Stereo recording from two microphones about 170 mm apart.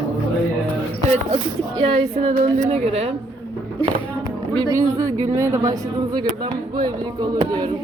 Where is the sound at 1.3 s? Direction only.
30° right (ahead or behind).